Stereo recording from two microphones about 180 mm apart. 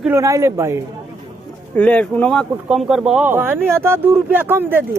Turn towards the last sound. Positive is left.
turn(degrees=-10)  # may be behind; listen again after turning